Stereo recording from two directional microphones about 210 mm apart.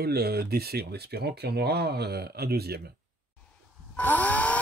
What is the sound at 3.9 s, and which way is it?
Chainsaw, 5° left (ahead or behind).